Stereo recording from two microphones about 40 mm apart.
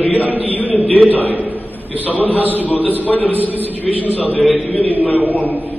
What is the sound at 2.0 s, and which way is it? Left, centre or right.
A man's voice, left.